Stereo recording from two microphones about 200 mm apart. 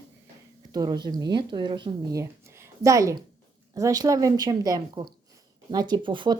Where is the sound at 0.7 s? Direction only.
20° right (ahead or behind).